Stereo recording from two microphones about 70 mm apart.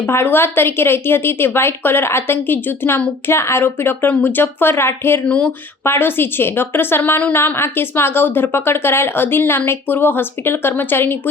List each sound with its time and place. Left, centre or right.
0.0 s a woman's voice: left
5.2 s speech: centre
5.8 s a woman's voice: left